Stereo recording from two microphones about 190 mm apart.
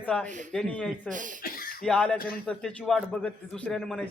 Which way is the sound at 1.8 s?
5° left (ahead or behind).